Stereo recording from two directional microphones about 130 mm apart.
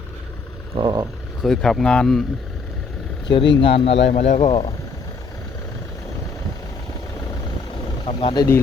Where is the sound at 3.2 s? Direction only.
40° left (ahead or behind).